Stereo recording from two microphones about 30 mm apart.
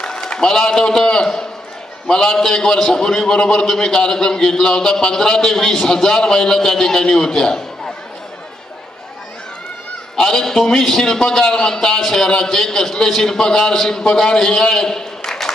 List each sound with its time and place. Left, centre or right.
0.3 s a man's voice: left
10.1 s a man's voice: centre